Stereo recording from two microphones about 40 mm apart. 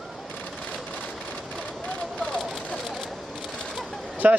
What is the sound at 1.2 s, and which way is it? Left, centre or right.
Vehicle, left.